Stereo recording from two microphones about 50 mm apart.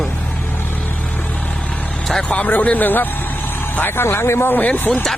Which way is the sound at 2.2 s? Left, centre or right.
Left.